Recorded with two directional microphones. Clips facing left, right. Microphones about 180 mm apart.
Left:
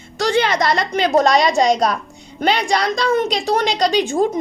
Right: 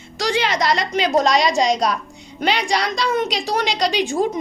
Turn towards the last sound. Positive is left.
turn(degrees=50)  # may be behind; listen again after turning